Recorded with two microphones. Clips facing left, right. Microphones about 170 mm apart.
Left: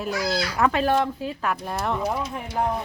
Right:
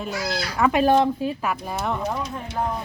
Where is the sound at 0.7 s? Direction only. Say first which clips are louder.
Right 4 dB; 15° right (ahead or behind).